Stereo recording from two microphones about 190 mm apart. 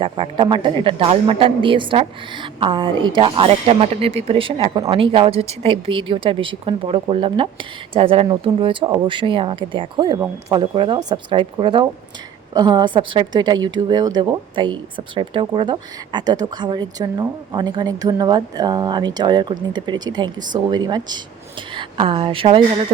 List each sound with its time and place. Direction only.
0.0 s a woman's voice: 25° right (ahead or behind)